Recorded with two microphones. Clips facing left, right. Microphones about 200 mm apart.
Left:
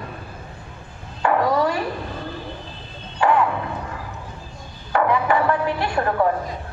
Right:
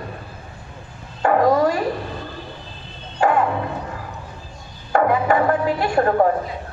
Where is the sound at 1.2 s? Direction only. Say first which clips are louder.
Right 3 dB; 45° right (ahead or behind).